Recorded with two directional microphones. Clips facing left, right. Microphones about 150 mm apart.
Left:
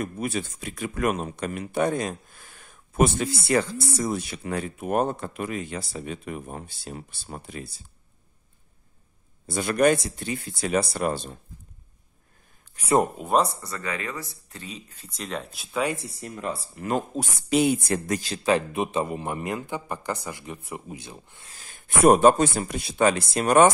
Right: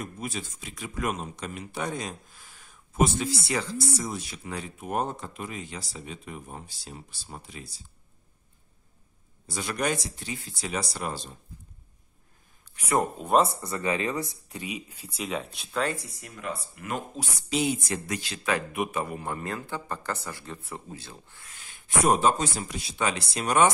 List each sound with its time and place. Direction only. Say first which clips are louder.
0.0 s speech: left 6 dB; 60° left (ahead or behind)
9.5 s speech: left 9 dB; 55° left (ahead or behind)
12.7 s speech: left 5 dB; 30° left (ahead or behind)
13.6 s speech: right 4 dB; 20° right (ahead or behind); by 16.0 s 10° left (ahead or behind)
16.0 s speech: left 6 dB; 30° left (ahead or behind)
17.1 s speech: left 6 dB; 50° left (ahead or behind); by 21.5 s 15° left (ahead or behind)
21.5 s a man's voice: even; 40° left (ahead or behind)